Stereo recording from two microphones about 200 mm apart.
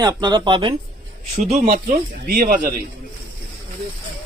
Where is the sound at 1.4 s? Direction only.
45° right (ahead or behind).